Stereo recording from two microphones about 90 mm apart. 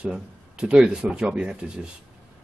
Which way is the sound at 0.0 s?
10° right (ahead or behind).